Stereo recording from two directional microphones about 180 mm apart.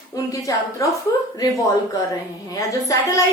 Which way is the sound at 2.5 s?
20° left (ahead or behind).